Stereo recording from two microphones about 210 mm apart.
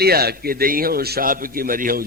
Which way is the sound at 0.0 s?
50° right (ahead or behind).